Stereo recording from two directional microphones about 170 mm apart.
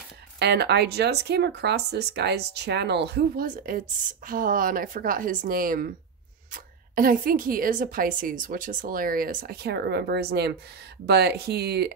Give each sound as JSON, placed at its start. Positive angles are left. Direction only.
{"t": 0.4, "sound": "speech", "side_deg": -75}